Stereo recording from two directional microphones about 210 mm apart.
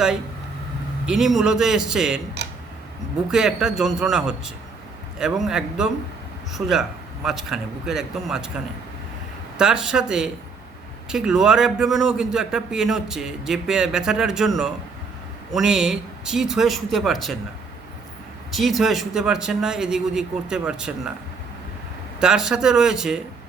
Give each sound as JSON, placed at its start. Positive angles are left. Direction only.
{"t": 1.0, "sound": "a man's voice", "side_deg": 0}
{"t": 3.3, "sound": "a man's voice", "side_deg": 0}
{"t": 9.6, "sound": "a man's voice", "side_deg": -5}
{"t": 18.5, "sound": "a man's voice", "side_deg": 0}
{"t": 22.2, "sound": "a man's voice", "side_deg": -5}